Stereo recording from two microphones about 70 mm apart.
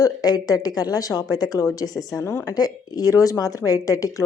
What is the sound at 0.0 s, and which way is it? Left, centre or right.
A woman's voice, left.